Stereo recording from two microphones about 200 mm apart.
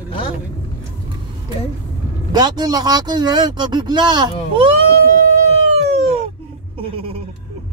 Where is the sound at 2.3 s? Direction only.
20° right (ahead or behind).